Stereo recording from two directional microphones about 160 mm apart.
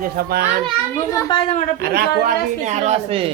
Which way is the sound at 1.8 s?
75° right (ahead or behind).